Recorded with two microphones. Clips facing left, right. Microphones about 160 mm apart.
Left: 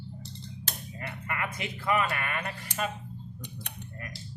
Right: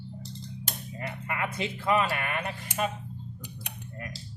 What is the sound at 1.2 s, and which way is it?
Speech, 20° right (ahead or behind).